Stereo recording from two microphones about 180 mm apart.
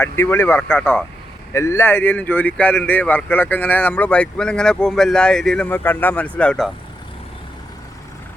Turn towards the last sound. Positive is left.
turn(degrees=5)  # may be behind; listen again after turning